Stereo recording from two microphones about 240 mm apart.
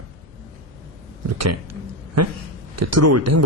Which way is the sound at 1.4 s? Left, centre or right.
Right.